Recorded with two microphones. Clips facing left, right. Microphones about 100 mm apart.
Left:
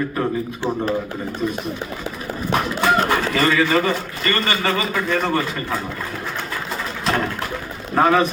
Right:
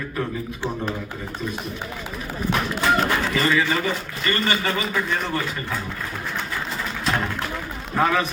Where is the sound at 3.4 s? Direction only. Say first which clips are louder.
Left 4 dB; 65° left (ahead or behind).